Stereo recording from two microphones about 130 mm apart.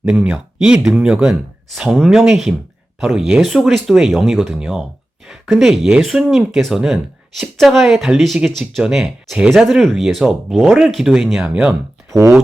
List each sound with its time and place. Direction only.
0.1 s speech: 5° right (ahead or behind)
12.1 s speech: 20° right (ahead or behind)